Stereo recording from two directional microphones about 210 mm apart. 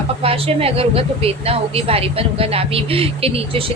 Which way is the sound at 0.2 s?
25° right (ahead or behind).